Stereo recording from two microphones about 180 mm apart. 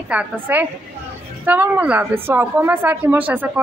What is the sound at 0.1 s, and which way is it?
A woman's voice, 10° right (ahead or behind).